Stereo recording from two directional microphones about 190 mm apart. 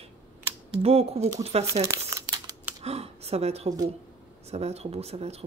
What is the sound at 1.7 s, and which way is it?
Crumpling, 15° right (ahead or behind).